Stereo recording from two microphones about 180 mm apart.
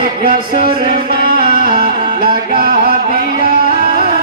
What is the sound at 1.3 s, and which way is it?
Music, 55° right (ahead or behind).